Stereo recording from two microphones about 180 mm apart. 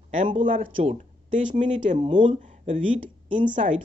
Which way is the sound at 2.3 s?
40° right (ahead or behind).